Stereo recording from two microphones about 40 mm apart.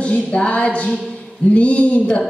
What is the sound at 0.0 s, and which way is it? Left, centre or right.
Music, left.